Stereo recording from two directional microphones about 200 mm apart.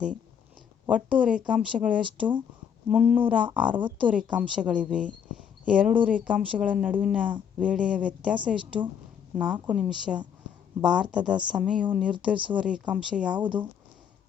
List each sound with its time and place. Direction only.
0.9 s speech: 5° right (ahead or behind)
3.8 s speech: 25° right (ahead or behind)
4.3 s speech: 5° right (ahead or behind)